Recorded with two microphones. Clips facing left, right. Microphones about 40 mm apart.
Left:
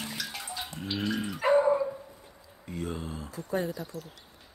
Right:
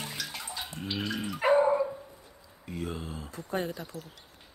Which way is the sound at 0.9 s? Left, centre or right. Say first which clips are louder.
Left 2 dB; centre.